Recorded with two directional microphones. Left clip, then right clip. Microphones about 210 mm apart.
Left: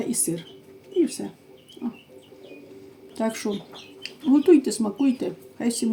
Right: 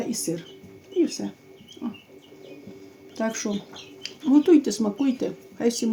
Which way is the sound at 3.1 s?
10° right (ahead or behind).